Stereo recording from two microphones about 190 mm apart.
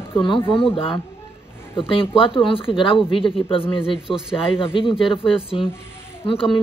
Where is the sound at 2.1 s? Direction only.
25° left (ahead or behind).